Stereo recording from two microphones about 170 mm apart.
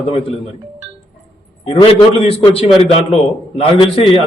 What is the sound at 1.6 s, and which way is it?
A man's voice, 30° left (ahead or behind).